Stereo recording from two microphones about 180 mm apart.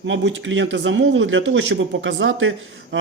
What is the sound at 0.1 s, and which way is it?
Speech, 90° right.